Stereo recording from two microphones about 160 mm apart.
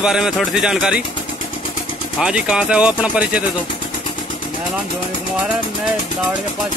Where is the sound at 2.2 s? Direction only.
5° right (ahead or behind).